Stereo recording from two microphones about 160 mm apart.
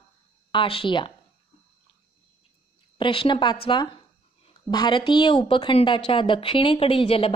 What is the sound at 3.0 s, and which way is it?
A woman's voice, 30° left (ahead or behind).